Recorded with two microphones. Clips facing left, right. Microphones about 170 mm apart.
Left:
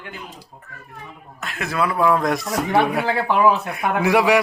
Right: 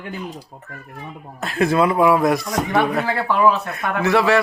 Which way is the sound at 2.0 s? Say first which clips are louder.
Right 3 dB; 10° right (ahead or behind).